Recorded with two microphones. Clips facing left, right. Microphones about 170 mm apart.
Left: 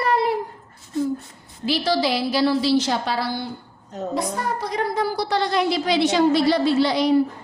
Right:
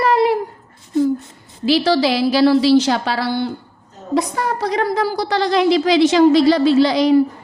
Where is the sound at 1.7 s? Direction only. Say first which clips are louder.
Right 6 dB; 90° right.